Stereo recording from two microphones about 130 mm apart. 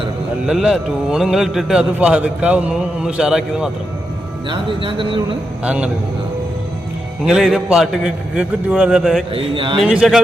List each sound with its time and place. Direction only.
0.4 s a man's voice: 5° right (ahead or behind)
4.4 s speech: 40° right (ahead or behind)
5.6 s a man's voice: 10° right (ahead or behind)
7.3 s a man's voice: 5° right (ahead or behind)
9.3 s speech: 40° right (ahead or behind)
9.8 s a man's voice: 5° right (ahead or behind)